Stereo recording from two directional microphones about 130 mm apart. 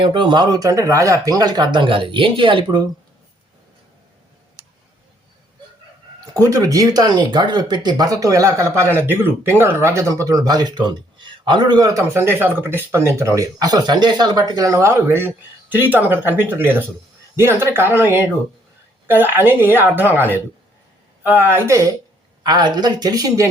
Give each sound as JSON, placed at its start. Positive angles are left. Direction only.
{"t": 0.0, "sound": "speech", "side_deg": -40}
{"t": 6.4, "sound": "a woman's voice", "side_deg": -25}
{"t": 22.4, "sound": "speech", "side_deg": -35}